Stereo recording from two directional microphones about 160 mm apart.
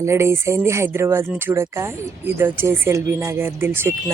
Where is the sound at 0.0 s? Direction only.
15° right (ahead or behind).